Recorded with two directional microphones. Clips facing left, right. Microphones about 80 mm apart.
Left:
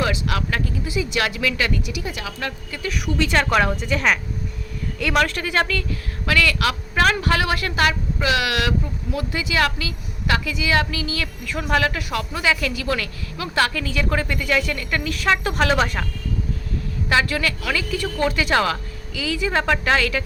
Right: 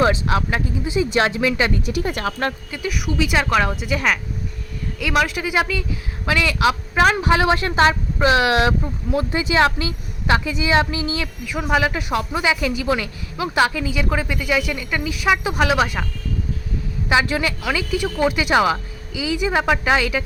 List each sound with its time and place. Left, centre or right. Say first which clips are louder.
0.0 s a woman's voice: right 5 dB; right
1.9 s speech: right 6 dB; right
2.7 s a woman's voice: right 1 dB; centre
17.1 s speech: right 2 dB; centre